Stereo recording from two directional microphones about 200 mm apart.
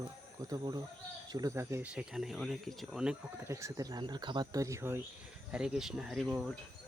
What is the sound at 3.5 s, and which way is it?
Speech, 15° right (ahead or behind).